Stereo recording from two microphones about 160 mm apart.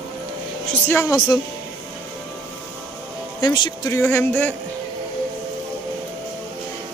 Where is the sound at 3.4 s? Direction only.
25° left (ahead or behind).